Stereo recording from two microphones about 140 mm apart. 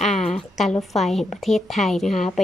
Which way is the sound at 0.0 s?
5° left (ahead or behind).